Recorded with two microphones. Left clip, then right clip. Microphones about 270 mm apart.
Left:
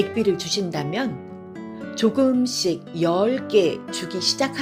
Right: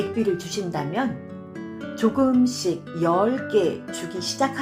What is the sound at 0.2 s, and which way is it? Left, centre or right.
Speech, left.